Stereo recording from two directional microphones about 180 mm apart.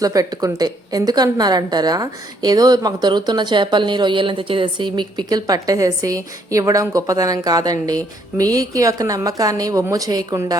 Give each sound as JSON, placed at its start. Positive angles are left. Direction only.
{"t": 0.0, "sound": "a woman's voice", "side_deg": -20}